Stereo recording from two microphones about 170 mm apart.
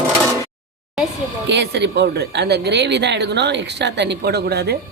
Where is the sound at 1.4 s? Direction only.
90° right.